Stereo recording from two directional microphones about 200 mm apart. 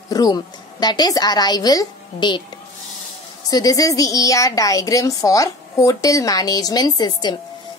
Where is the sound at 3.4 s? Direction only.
20° left (ahead or behind).